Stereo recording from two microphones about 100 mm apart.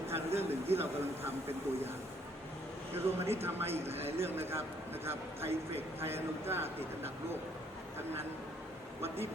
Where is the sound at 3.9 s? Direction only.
25° right (ahead or behind).